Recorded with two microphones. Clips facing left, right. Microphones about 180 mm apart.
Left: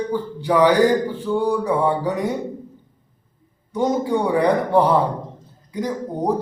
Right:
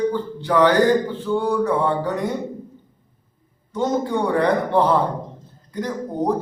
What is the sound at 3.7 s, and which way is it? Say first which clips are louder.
A man's voice: left 2 dB; 15° left (ahead or behind).